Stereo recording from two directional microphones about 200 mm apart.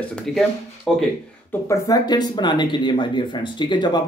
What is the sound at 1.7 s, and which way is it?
Speech, 20° left (ahead or behind).